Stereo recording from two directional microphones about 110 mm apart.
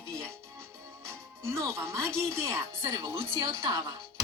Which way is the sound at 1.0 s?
25° right (ahead or behind).